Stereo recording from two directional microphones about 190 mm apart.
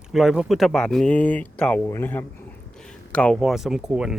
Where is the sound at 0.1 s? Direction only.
Centre (ahead or behind).